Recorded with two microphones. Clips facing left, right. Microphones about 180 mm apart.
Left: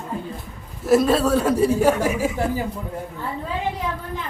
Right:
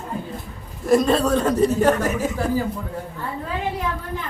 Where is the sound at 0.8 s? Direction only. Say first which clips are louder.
Even; 5° left (ahead or behind).